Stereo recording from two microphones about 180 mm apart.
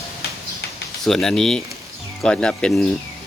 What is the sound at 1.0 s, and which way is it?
Speech, centre (ahead or behind).